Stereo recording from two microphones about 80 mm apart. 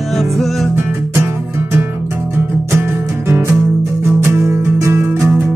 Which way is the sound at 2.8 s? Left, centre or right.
Right.